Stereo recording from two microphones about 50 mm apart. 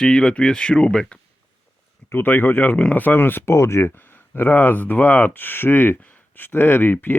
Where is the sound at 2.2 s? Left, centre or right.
Left.